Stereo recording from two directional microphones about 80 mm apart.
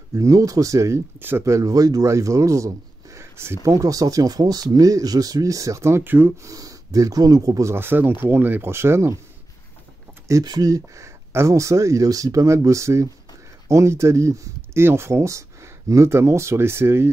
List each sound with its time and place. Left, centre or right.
0.1 s speech: right
3.7 s speech: right
6.4 s speech: right
7.7 s speech: right
10.4 s speech: right